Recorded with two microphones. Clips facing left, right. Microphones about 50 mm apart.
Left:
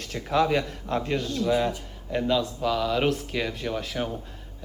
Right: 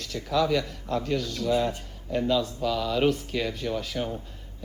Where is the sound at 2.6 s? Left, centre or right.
Centre.